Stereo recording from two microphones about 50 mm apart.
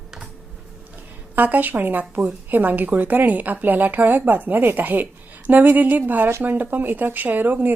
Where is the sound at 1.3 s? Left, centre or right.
Right.